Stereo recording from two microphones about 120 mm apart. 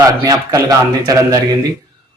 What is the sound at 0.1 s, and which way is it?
A man's voice, 30° right (ahead or behind).